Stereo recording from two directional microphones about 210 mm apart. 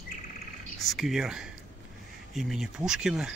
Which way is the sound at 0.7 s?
Centre (ahead or behind).